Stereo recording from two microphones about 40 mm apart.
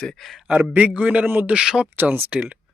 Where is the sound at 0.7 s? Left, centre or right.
Right.